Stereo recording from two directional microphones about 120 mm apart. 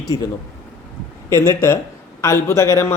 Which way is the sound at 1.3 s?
20° left (ahead or behind).